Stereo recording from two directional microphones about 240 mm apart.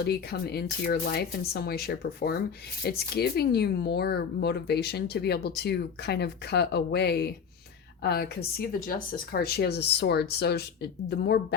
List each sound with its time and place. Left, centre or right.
0.0 s speech: left